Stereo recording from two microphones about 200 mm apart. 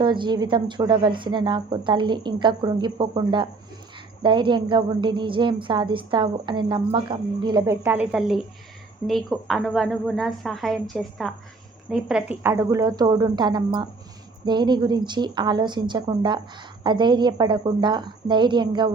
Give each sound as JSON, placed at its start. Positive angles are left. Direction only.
{"t": 0.0, "sound": "a woman's voice", "side_deg": -25}